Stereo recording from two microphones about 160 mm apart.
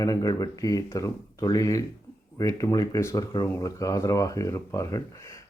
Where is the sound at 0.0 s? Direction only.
20° left (ahead or behind).